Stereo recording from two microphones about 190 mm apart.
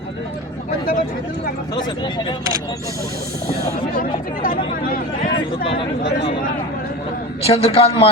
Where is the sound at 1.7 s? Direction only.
25° left (ahead or behind).